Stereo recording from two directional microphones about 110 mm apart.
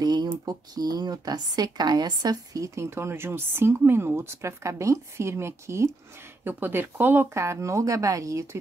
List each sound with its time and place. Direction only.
0.0 s speech: 40° right (ahead or behind)